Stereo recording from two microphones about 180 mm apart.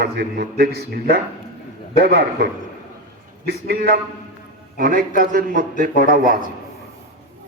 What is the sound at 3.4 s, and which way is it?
A man's voice, 60° right (ahead or behind).